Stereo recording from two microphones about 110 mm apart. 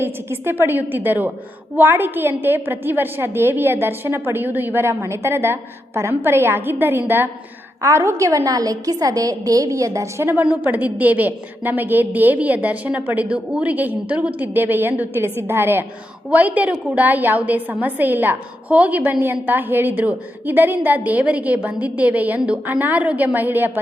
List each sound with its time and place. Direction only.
0.0 s a woman's voice: 20° right (ahead or behind)